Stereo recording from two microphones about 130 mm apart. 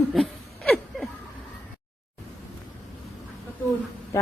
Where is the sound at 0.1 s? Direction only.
5° left (ahead or behind).